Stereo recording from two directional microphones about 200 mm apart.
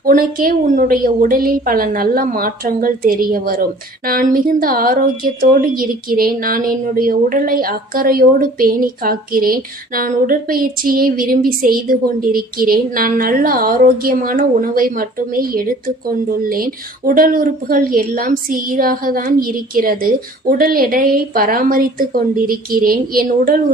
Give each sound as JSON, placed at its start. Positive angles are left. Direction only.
{"t": 0.0, "sound": "a woman's voice", "side_deg": -45}